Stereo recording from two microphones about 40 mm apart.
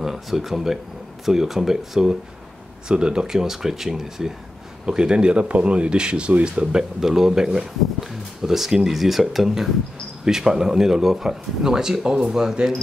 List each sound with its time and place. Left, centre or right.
0.0 s speech: centre; by 3.3 s right
3.3 s speech: centre
4.8 s speech: right